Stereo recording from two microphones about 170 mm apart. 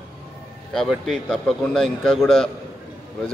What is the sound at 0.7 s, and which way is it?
A man's voice, centre (ahead or behind).